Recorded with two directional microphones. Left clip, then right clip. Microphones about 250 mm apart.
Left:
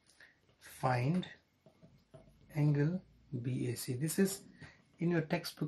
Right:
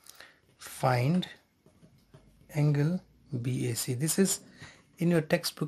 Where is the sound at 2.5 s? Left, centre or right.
Right.